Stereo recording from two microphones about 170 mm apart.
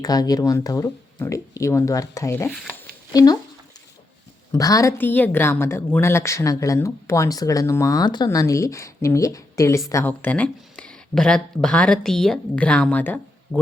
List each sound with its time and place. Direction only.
0.0 s speech: 20° left (ahead or behind)
4.5 s a woman's voice: 20° left (ahead or behind)